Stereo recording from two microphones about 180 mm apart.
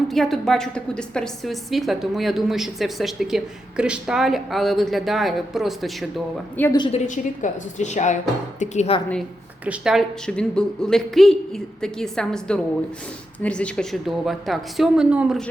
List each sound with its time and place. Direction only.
0.1 s a woman's voice: centre (ahead or behind)
6.7 s a woman's voice: 30° left (ahead or behind)
7.1 s speech: 40° left (ahead or behind)
9.6 s a woman's voice: 5° right (ahead or behind)